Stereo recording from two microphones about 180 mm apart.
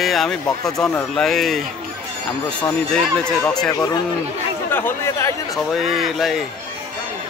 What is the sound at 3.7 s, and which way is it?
Speech, 20° left (ahead or behind).